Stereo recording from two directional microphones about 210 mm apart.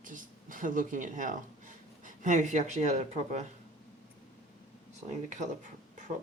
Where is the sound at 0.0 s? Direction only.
40° right (ahead or behind).